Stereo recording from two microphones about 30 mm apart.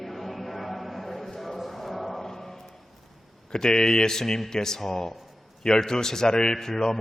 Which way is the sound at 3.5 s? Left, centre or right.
Left.